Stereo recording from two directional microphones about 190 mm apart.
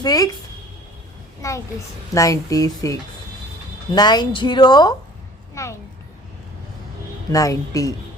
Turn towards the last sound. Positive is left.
turn(degrees=15)  # may be behind; listen again after turning